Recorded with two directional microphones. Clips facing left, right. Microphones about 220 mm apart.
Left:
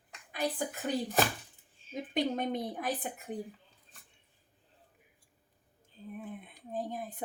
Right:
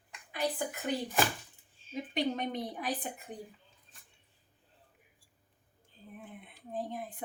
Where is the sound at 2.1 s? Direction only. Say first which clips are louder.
Left 2 dB; 50° left (ahead or behind).